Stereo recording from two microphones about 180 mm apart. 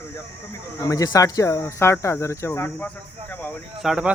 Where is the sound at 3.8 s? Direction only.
5° right (ahead or behind).